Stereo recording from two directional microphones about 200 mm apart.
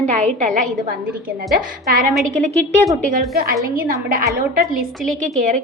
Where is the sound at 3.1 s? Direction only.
50° right (ahead or behind).